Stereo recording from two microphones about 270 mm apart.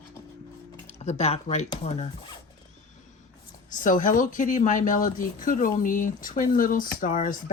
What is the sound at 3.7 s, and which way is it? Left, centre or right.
Speech, left.